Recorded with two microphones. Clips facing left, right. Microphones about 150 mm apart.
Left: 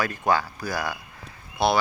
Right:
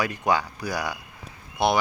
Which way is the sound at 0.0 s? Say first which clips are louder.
Even; 15° right (ahead or behind).